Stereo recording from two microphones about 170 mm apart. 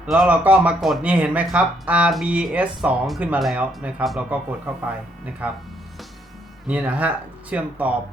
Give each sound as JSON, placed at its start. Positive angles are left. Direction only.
{"t": 0.0, "sound": "speech", "side_deg": -5}
{"t": 6.7, "sound": "speech", "side_deg": -10}